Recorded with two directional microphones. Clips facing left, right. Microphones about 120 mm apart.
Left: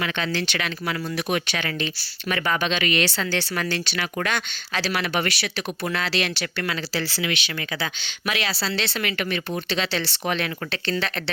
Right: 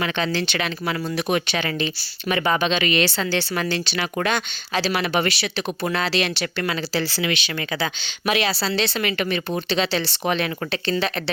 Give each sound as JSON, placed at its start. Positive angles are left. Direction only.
{"t": 0.0, "sound": "a woman's voice", "side_deg": -25}